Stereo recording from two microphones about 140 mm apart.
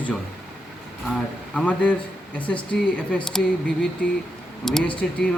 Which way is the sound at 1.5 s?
10° left (ahead or behind).